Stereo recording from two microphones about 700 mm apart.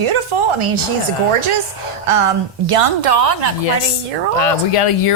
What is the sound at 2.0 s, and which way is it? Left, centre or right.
A woman's voice, right.